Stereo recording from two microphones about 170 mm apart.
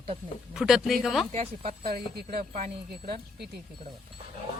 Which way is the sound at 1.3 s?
35° right (ahead or behind).